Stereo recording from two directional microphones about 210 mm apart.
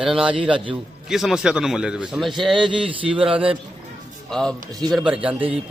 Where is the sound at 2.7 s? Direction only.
25° right (ahead or behind).